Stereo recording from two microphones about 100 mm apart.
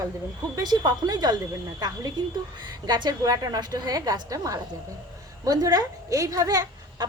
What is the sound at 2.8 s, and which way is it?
A woman's voice, 45° right (ahead or behind).